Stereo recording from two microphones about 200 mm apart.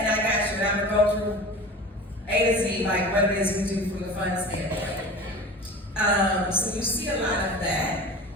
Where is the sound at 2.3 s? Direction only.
10° left (ahead or behind).